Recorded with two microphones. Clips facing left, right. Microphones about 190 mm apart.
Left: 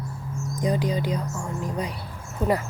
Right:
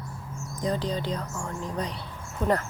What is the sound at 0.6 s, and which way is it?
Speech, 10° left (ahead or behind).